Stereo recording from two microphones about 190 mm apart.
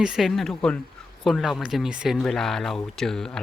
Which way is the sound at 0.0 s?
Centre (ahead or behind).